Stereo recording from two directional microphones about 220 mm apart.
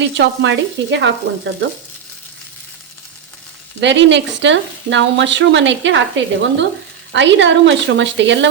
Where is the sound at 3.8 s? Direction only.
55° right (ahead or behind).